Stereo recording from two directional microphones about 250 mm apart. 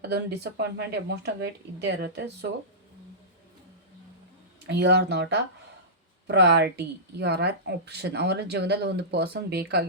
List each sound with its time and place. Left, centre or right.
0.1 s speech: right
4.6 s speech: right